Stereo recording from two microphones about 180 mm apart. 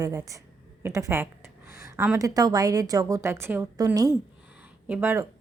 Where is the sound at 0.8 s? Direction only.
15° right (ahead or behind).